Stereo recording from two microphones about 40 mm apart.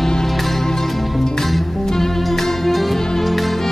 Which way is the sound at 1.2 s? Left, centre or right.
Centre.